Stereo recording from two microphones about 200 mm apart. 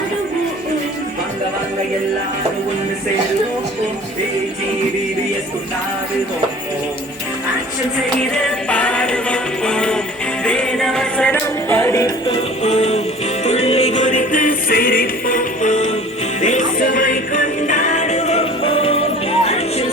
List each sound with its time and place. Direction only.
8.3 s music: 5° left (ahead or behind)
12.6 s music: 35° left (ahead or behind)